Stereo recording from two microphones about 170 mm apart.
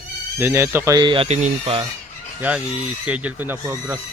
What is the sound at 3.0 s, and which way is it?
Speech, 10° right (ahead or behind).